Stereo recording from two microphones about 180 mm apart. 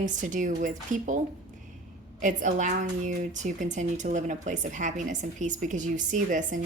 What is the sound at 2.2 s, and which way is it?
Speech, 45° right (ahead or behind).